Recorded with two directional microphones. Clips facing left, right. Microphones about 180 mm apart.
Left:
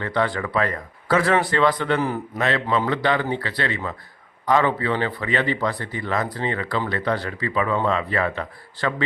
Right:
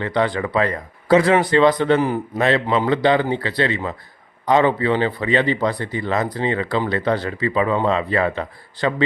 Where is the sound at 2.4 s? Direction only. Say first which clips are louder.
Right 4 dB; 30° right (ahead or behind).